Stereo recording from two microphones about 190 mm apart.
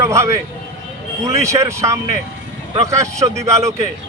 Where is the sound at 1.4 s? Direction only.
15° right (ahead or behind).